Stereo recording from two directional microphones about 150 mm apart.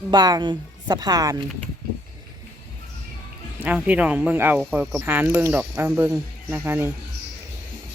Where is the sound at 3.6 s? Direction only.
10° right (ahead or behind).